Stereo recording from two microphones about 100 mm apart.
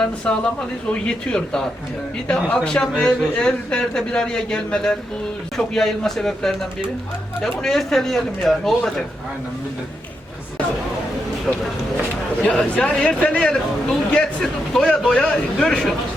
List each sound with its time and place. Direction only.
0.3 s speech: 10° left (ahead or behind)
11.5 s speech: centre (ahead or behind)
12.4 s speech: 10° left (ahead or behind)